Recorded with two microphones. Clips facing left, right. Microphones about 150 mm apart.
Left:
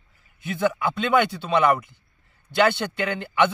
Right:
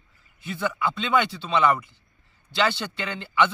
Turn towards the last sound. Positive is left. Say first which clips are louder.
# left 5 dB
turn(degrees=50)  # may be behind; listen again after turning